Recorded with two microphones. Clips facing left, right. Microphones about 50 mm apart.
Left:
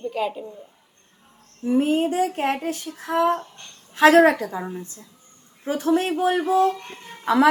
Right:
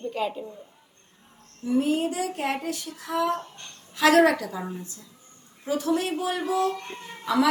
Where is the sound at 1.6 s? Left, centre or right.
Left.